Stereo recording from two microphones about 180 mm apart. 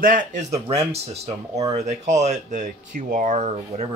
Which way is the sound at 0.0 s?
50° right (ahead or behind).